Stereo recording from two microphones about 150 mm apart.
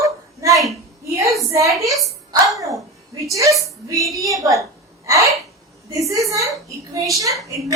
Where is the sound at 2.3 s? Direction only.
20° right (ahead or behind).